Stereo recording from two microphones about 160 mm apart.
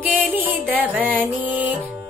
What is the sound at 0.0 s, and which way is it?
Music, 10° right (ahead or behind).